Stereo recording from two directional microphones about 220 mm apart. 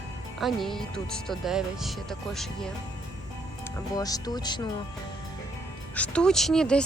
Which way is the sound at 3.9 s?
15° left (ahead or behind).